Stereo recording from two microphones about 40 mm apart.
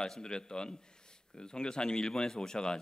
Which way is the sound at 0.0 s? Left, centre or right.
Centre.